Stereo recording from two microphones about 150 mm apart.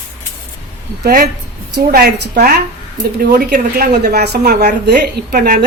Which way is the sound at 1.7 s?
90° right.